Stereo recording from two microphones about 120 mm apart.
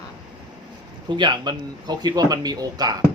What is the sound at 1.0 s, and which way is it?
Speech, 40° right (ahead or behind).